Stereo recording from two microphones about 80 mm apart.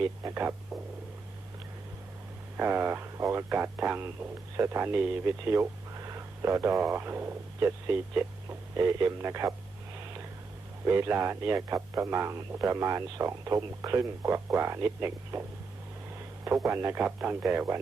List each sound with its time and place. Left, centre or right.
0.0 s speech: right
2.6 s speech: right
4.5 s speech: right
6.0 s a sound: right
6.9 s speech: right
10.8 s speech: right
17.0 s speech: centre
17.4 s speech: right